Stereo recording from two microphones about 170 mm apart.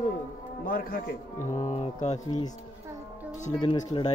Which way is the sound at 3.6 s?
25° left (ahead or behind).